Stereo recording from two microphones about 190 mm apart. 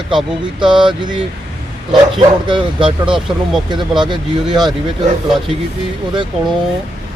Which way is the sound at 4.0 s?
25° right (ahead or behind).